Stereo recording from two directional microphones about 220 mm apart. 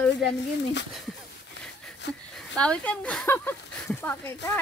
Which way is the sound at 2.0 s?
55° left (ahead or behind).